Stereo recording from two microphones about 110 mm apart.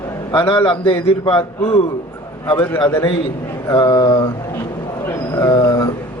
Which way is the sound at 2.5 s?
15° left (ahead or behind).